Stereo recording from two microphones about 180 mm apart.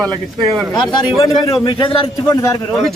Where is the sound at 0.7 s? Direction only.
25° left (ahead or behind).